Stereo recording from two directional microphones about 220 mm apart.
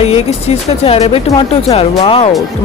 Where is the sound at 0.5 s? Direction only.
30° left (ahead or behind).